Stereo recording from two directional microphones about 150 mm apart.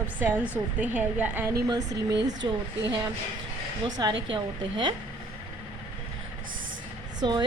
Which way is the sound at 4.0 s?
30° right (ahead or behind).